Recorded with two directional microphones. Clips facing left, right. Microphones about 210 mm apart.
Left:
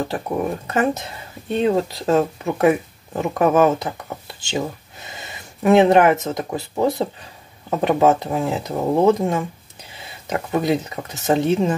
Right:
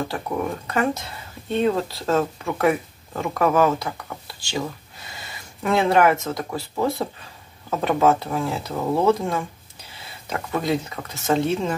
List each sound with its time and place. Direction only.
0.1 s speech: 20° left (ahead or behind)